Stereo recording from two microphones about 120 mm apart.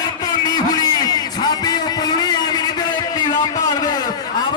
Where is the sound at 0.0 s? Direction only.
35° left (ahead or behind).